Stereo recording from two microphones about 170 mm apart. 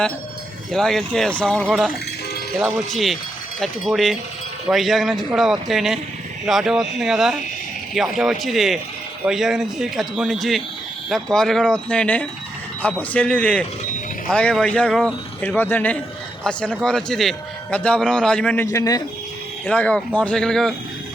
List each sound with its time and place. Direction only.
0.7 s a man's voice: centre (ahead or behind)
18.6 s a man's voice: 15° left (ahead or behind)
19.6 s a man's voice: 5° left (ahead or behind)